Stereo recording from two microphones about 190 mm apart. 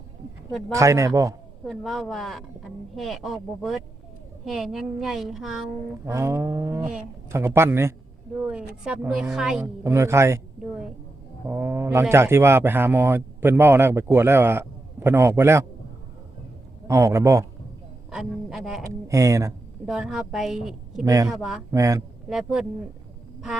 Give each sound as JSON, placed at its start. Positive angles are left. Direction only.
{"t": 0.7, "sound": "speech", "side_deg": -15}
{"t": 1.6, "sound": "a woman's voice", "side_deg": 0}
{"t": 6.1, "sound": "a woman's voice", "side_deg": -15}
{"t": 9.8, "sound": "speech", "side_deg": -15}
{"t": 16.8, "sound": "speech", "side_deg": -15}
{"t": 18.1, "sound": "speech", "side_deg": -5}
{"t": 18.8, "sound": "speech", "side_deg": -15}
{"t": 19.8, "sound": "a woman's voice", "side_deg": -5}
{"t": 21.0, "sound": "speech", "side_deg": -15}
{"t": 21.2, "sound": "a woman's voice", "side_deg": 0}
{"t": 21.7, "sound": "speech", "side_deg": -15}
{"t": 22.3, "sound": "a woman's voice", "side_deg": -5}